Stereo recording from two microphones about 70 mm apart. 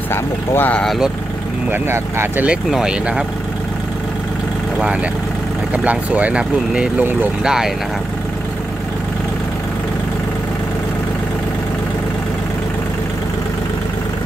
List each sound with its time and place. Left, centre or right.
0.1 s speech: left
0.8 s speech: centre
1.7 s speech: right
2.7 s speech: centre
5.7 s speech: right